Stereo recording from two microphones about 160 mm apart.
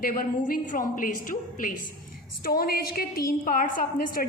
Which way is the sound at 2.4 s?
70° left (ahead or behind).